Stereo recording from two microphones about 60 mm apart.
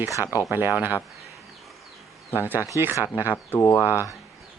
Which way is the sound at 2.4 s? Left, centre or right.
Right.